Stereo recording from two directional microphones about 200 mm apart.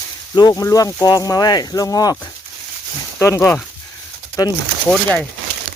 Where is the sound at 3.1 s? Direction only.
15° left (ahead or behind).